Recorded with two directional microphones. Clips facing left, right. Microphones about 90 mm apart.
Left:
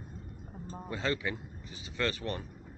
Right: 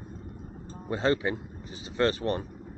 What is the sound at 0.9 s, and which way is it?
Speech, 35° right (ahead or behind).